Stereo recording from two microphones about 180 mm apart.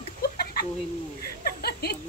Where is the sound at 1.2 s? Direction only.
60° left (ahead or behind).